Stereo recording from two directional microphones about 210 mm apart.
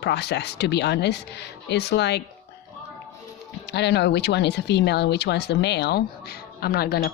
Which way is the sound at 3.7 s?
55° left (ahead or behind).